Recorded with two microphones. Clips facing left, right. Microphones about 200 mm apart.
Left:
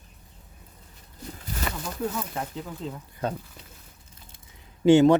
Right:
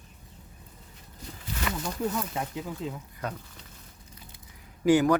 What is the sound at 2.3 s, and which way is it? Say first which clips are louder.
Speech: even; 10° right (ahead or behind).